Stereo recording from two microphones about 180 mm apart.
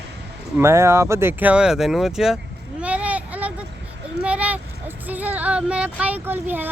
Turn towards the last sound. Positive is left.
turn(degrees=-10)  # may be behind; listen again after turning